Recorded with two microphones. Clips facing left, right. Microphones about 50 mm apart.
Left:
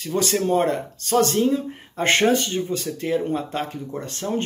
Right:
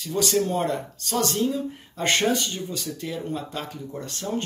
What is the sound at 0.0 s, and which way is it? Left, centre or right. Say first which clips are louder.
Speech: left 1 dB; left.